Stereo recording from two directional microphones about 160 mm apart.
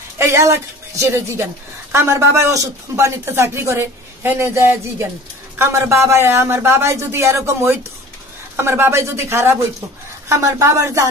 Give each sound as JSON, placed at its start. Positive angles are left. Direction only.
{"t": 0.2, "sound": "a woman's voice", "side_deg": -15}